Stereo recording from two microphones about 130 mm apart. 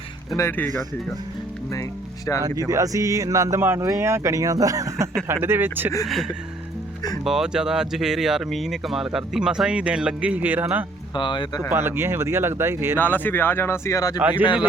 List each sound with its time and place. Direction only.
0.3 s speech: 20° left (ahead or behind)
2.6 s speech: 25° right (ahead or behind)
6.1 s speech: centre (ahead or behind)
11.1 s speech: 35° left (ahead or behind)
11.7 s speech: 15° right (ahead or behind)
13.0 s speech: 15° left (ahead or behind)
14.2 s speech: 10° right (ahead or behind)